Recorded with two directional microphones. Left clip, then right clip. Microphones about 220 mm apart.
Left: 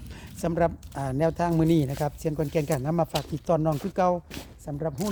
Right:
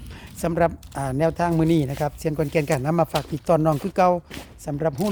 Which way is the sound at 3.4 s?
20° right (ahead or behind).